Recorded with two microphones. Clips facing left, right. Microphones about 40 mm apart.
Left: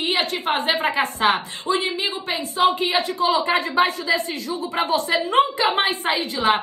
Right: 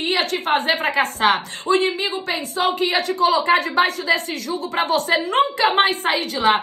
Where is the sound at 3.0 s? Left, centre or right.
Right.